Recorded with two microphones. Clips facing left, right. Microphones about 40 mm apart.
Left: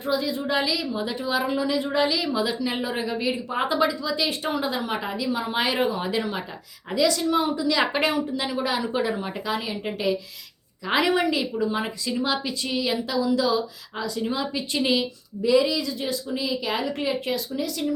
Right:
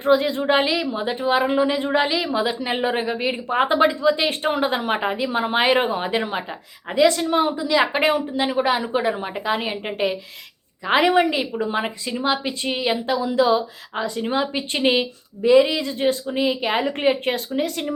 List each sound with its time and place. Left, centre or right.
0.0 s a woman's voice: right
9.6 s a woman's voice: right